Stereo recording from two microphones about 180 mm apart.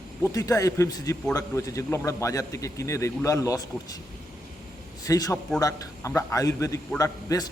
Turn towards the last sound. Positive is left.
turn(degrees=20)  # may be behind; listen again after turning